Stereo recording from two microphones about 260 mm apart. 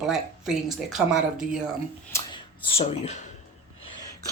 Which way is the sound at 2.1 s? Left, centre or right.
Centre.